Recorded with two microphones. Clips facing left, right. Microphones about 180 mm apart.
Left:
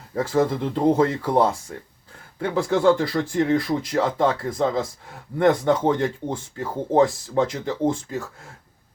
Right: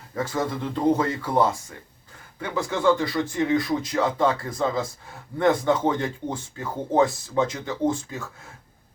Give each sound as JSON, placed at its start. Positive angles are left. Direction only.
{"t": 0.1, "sound": "speech", "side_deg": 30}